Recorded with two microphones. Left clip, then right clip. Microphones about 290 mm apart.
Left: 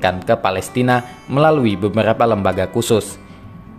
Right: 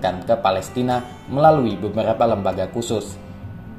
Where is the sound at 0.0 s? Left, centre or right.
Left.